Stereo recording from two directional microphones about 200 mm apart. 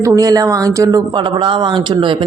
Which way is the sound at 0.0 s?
20° right (ahead or behind).